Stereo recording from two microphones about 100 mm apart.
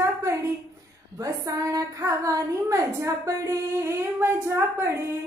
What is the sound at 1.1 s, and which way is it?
A woman's voice, 35° right (ahead or behind).